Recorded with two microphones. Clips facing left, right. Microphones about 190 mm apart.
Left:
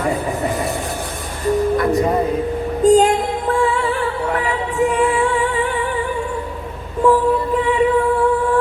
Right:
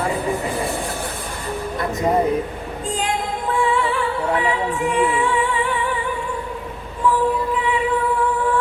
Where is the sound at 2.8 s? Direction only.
40° left (ahead or behind).